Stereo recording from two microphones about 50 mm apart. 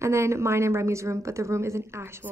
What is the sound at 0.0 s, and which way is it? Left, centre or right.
A woman's voice, right.